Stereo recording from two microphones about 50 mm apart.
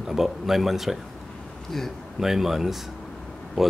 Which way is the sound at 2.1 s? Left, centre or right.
Centre.